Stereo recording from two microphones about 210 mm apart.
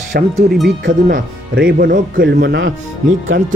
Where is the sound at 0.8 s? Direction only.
60° right (ahead or behind).